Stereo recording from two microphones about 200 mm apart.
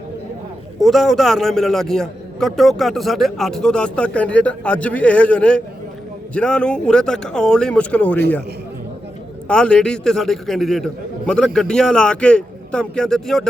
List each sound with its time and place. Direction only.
0.8 s a man's voice: centre (ahead or behind)
9.5 s a man's voice: 5° left (ahead or behind)